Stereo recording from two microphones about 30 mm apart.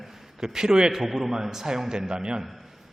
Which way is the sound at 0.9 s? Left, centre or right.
Centre.